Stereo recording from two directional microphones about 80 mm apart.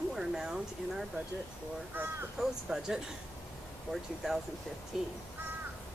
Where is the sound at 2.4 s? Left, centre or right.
Centre.